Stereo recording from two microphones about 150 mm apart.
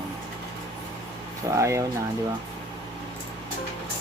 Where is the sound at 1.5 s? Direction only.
20° right (ahead or behind).